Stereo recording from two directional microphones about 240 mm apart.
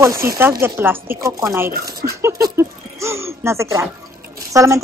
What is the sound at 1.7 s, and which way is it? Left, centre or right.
Speech, right.